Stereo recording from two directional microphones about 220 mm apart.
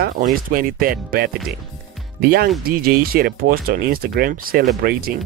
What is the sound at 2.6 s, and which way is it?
Speech, 40° right (ahead or behind).